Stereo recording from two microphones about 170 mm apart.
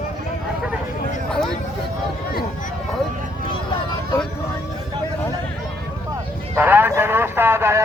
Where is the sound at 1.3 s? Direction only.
5° left (ahead or behind).